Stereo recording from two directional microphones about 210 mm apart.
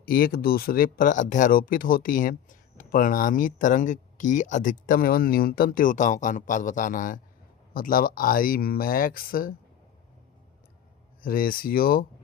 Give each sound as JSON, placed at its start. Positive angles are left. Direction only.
{"t": 0.0, "sound": "speech", "side_deg": 45}
{"t": 11.2, "sound": "speech", "side_deg": 45}